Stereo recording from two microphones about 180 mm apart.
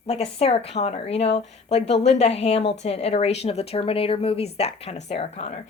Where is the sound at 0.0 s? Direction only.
35° left (ahead or behind).